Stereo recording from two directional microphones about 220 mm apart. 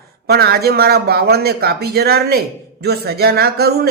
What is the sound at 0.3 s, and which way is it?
Speech, 45° right (ahead or behind).